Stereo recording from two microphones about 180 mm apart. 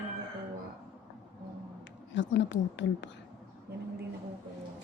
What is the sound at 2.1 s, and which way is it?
Speech, 85° left.